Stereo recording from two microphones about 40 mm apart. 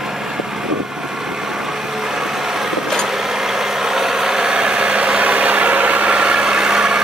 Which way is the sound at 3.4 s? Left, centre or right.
Centre.